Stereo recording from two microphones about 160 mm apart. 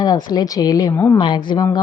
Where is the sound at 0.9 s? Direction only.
15° left (ahead or behind).